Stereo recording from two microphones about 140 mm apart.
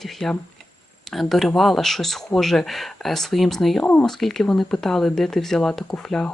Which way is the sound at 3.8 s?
10° left (ahead or behind).